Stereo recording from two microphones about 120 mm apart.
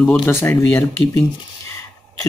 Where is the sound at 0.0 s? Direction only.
10° left (ahead or behind).